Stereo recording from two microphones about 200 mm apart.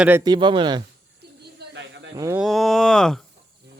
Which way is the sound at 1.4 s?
55° right (ahead or behind).